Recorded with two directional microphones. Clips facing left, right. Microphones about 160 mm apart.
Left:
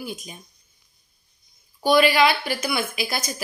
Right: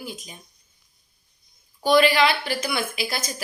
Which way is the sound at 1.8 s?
10° left (ahead or behind).